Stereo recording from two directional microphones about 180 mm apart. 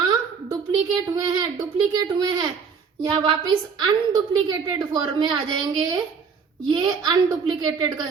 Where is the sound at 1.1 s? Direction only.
20° right (ahead or behind).